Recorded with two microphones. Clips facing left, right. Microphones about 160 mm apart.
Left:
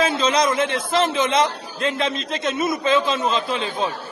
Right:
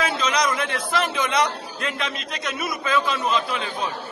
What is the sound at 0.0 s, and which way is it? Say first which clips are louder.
A man's voice: left 4 dB; 25° left (ahead or behind).